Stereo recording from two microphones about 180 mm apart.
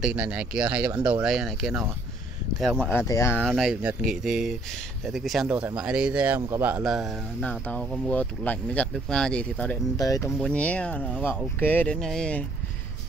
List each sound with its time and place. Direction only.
0.0 s speech: 5° right (ahead or behind)
2.9 s speech: 15° left (ahead or behind)
3.4 s speech: centre (ahead or behind)
9.9 s speech: 20° left (ahead or behind)
10.4 s speech: 5° left (ahead or behind)